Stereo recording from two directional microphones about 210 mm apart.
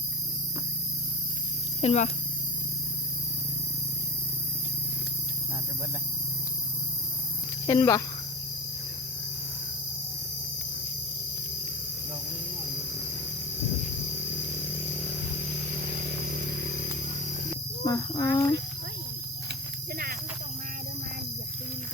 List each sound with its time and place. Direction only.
1.8 s speech: 30° left (ahead or behind)
7.7 s speech: 15° left (ahead or behind)
17.8 s speech: 15° left (ahead or behind)